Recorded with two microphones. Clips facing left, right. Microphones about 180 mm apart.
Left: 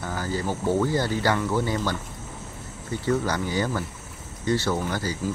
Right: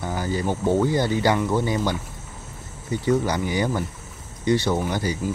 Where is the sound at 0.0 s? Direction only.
15° right (ahead or behind).